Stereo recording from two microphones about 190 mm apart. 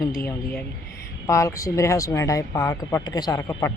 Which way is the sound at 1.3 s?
15° left (ahead or behind).